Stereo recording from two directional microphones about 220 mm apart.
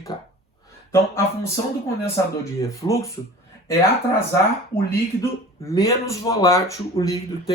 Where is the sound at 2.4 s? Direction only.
15° left (ahead or behind).